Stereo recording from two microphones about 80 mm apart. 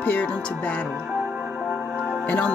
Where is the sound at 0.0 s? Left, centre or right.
Left.